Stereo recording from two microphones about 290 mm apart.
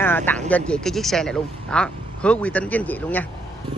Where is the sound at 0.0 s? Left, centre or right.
Centre.